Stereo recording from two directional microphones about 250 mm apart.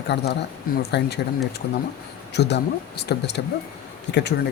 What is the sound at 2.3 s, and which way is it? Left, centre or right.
Speech, left.